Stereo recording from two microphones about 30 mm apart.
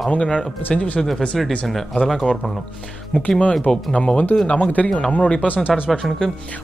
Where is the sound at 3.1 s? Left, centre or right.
Left.